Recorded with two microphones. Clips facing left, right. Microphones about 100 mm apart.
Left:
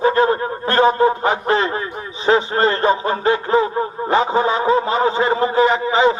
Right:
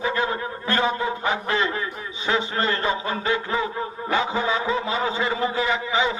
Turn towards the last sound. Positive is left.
turn(degrees=40)  # may be behind; listen again after turning